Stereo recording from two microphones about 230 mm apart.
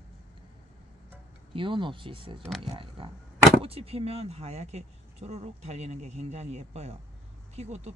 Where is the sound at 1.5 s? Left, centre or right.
Right.